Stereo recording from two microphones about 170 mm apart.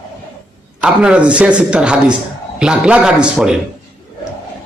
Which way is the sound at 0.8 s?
5° right (ahead or behind).